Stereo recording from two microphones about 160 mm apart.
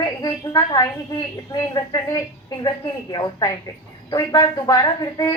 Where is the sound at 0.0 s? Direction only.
25° left (ahead or behind).